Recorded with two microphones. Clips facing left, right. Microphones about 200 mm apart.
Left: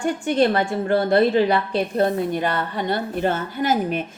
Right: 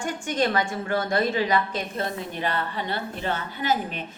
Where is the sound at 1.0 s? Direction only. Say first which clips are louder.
Left 8 dB; 60° left (ahead or behind).